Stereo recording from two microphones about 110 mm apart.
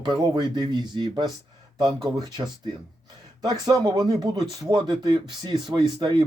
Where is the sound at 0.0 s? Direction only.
40° right (ahead or behind).